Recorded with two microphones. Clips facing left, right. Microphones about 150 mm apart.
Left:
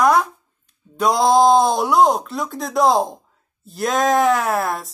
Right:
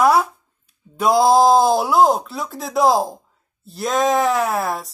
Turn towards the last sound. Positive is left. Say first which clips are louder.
# even
turn(degrees=0)  # may be behind; listen again after turning